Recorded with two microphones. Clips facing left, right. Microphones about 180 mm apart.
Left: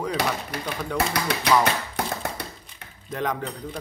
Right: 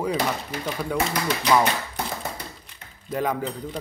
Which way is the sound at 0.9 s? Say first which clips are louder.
Left 1 dB; 70° left (ahead or behind).